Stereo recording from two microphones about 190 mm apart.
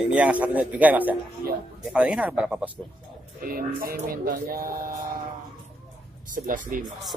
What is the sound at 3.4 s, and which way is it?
Speech, 50° right (ahead or behind).